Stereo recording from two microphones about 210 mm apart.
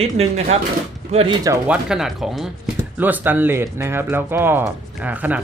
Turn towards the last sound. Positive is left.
turn(degrees=-10)  # may be behind; listen again after turning